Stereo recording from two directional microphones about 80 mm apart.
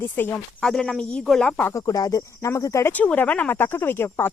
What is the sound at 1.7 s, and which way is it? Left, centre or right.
Speech, left.